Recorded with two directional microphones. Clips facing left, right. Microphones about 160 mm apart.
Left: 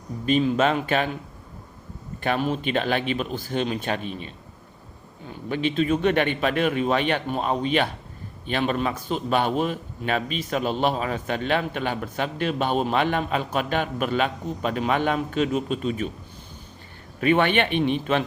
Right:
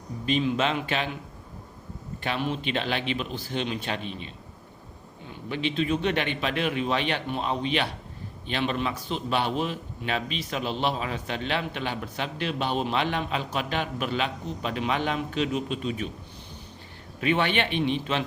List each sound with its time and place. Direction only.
0.3 s a man's voice: 45° left (ahead or behind)
2.2 s a man's voice: 45° left (ahead or behind)
5.5 s a man's voice: 50° left (ahead or behind)
17.2 s a man's voice: 50° left (ahead or behind)